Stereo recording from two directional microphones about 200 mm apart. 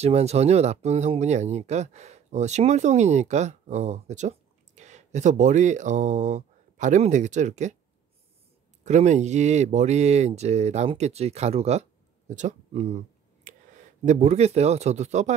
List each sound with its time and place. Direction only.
0.0 s speech: 30° right (ahead or behind)
8.8 s speech: 35° right (ahead or behind)